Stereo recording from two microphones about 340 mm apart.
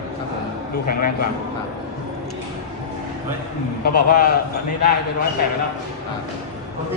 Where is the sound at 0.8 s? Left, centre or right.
Left.